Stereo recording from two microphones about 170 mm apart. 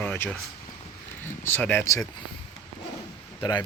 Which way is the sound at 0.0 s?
10° left (ahead or behind).